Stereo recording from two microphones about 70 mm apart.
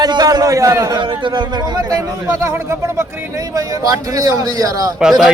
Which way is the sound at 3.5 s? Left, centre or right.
Right.